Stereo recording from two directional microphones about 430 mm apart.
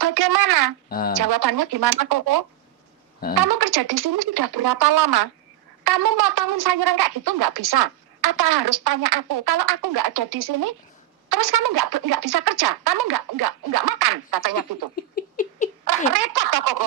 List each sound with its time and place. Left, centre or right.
0.0 s a sound: right
0.9 s a woman's voice: left
1.1 s speech: right
14.9 s rodents: centre
16.0 s speech: right